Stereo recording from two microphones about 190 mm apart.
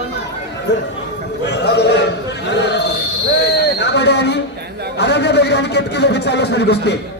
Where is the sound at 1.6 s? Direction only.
60° left (ahead or behind).